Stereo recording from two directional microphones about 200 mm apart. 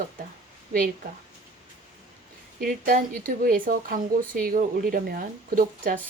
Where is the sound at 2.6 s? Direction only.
45° right (ahead or behind).